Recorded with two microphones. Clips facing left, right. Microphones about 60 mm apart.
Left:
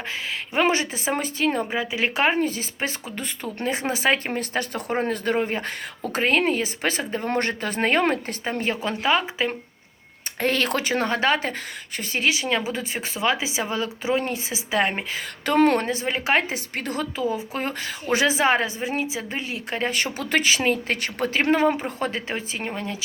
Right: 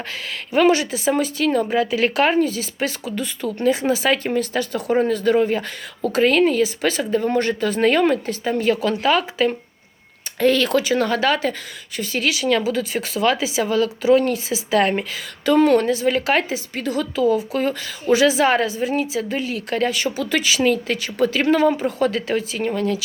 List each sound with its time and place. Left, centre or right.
0.5 s a woman's voice: left
1.7 s a woman's voice: centre
2.4 s speech: left
7.3 s speech: left
10.4 s a woman's voice: left
15.1 s speech: left
16.5 s a woman's voice: left
19.9 s speech: left